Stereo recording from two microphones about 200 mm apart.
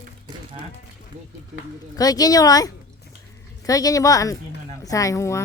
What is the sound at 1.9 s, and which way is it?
Speech, 20° left (ahead or behind).